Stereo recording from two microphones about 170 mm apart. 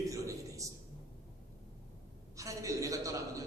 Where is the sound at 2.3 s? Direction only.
20° right (ahead or behind).